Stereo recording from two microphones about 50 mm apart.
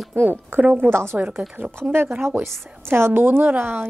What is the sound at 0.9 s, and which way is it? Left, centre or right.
A woman's voice, right.